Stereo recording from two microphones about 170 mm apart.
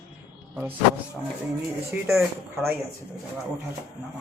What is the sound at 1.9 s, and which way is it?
Speech, 10° right (ahead or behind).